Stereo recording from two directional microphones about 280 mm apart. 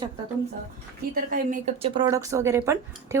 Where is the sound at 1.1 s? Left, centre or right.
Right; by 3.2 s centre.